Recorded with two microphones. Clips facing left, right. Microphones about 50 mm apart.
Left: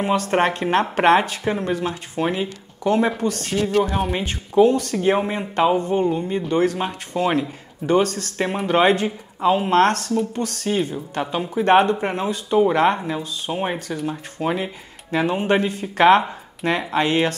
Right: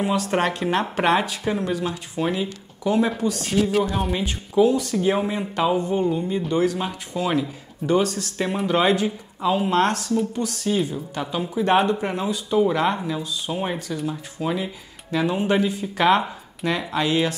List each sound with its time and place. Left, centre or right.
0.0 s speech: left
2.2 s speech: left
2.8 s speech: left
4.9 s speech: left
5.8 s speech: left
13.7 s speech: left